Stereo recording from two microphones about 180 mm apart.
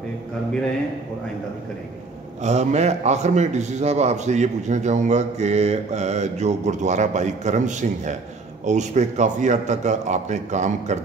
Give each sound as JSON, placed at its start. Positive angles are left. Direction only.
{"t": 2.4, "sound": "a man's voice", "side_deg": -40}